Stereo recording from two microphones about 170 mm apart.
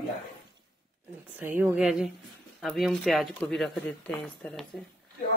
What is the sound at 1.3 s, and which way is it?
Speech, 10° right (ahead or behind).